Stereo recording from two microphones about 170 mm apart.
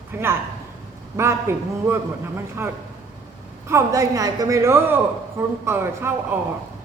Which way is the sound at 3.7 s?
15° right (ahead or behind).